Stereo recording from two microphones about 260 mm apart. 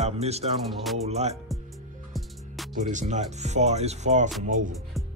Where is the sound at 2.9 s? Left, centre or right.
Right.